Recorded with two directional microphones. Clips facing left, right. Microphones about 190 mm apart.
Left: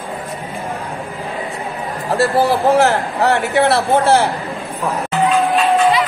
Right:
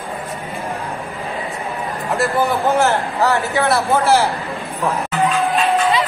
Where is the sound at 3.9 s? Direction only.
30° left (ahead or behind).